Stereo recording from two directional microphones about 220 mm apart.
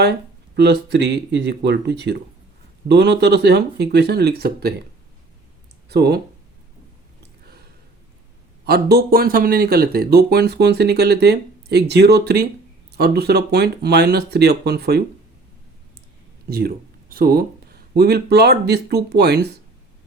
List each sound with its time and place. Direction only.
0.0 s speech: 50° right (ahead or behind)
5.9 s speech: 50° right (ahead or behind)
7.2 s a sound: 45° right (ahead or behind)
8.6 s speech: 45° right (ahead or behind)
16.5 s speech: 45° right (ahead or behind)